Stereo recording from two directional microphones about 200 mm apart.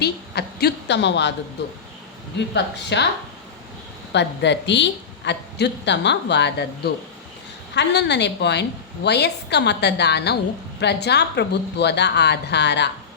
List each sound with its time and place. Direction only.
0.0 s a woman's voice: 55° left (ahead or behind)
2.6 s a woman's voice: 60° left (ahead or behind)
4.1 s a woman's voice: 60° left (ahead or behind)